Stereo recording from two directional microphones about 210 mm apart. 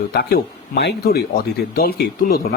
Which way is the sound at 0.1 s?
50° left (ahead or behind).